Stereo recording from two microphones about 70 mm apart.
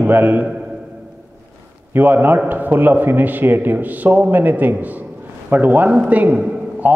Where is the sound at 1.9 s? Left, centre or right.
Right.